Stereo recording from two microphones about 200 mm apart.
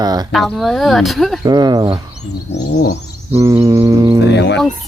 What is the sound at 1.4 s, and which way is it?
Speech, 20° right (ahead or behind).